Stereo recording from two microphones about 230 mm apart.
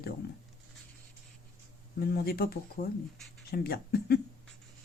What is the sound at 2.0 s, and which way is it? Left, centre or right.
Speech, left.